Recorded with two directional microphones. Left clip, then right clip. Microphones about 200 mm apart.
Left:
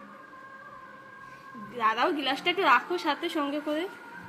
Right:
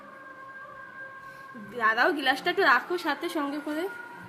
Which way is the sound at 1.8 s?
10° right (ahead or behind).